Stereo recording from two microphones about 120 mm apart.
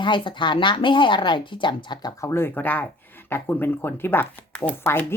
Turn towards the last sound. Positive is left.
turn(degrees=15)  # may be behind; listen again after turning